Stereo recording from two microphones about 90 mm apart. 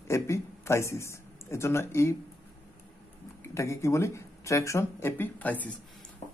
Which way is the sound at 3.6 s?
30° left (ahead or behind).